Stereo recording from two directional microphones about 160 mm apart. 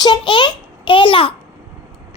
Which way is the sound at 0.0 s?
30° left (ahead or behind).